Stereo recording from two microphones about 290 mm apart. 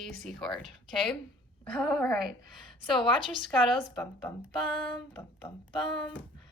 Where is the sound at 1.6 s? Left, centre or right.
Centre.